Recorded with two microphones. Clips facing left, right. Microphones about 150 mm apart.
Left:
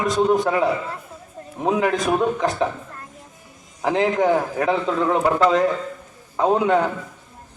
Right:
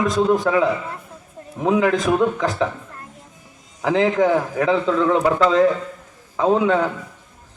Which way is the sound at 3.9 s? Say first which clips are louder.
Right 1 dB; 30° left (ahead or behind).